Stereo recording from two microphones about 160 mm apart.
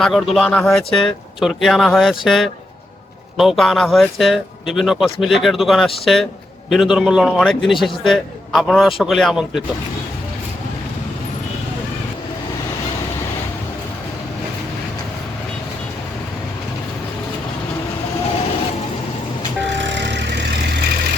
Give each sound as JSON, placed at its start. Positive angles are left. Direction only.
{"t": 0.0, "sound": "a man's voice", "side_deg": 0}
{"t": 19.6, "sound": "vehicle", "side_deg": -90}